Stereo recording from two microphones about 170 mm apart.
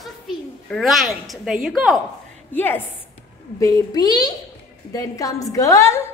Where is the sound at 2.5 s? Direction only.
10° left (ahead or behind).